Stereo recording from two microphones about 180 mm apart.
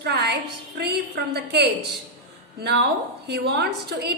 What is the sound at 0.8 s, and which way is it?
A woman's voice, 65° right (ahead or behind).